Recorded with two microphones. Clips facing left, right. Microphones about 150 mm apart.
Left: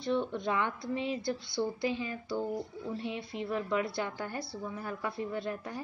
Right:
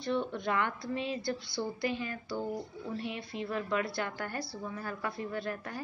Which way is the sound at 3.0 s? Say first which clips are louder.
Even; 20° left (ahead or behind).